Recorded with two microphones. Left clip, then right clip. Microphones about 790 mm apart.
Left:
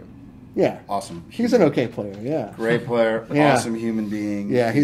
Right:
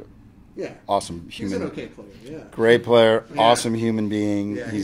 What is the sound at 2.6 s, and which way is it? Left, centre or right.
Speech, right.